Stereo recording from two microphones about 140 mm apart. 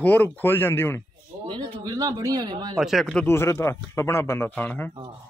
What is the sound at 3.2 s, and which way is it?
Speech, 15° left (ahead or behind).